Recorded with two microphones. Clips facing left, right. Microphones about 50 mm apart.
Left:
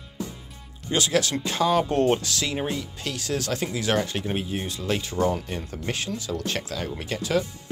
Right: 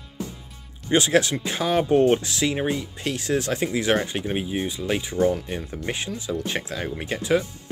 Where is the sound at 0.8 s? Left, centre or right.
Right.